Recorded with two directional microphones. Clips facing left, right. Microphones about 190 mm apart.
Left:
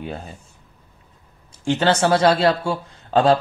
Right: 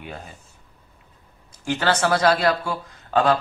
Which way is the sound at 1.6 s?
25° left (ahead or behind).